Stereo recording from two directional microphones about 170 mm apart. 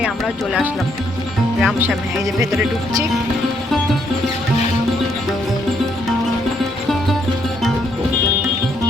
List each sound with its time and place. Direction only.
1.6 s speech: centre (ahead or behind)